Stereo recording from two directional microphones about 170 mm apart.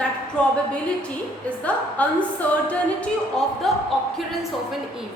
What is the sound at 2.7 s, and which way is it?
Music, 5° left (ahead or behind).